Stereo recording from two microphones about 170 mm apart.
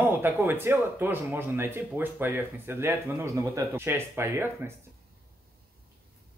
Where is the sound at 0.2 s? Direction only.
15° right (ahead or behind).